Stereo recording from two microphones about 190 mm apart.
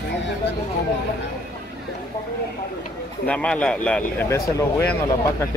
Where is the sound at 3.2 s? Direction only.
5° left (ahead or behind).